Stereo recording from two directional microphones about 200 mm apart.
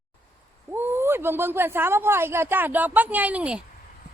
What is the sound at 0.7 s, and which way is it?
Speech, 10° right (ahead or behind).